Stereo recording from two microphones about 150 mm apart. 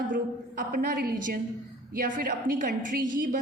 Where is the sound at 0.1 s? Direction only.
70° right (ahead or behind).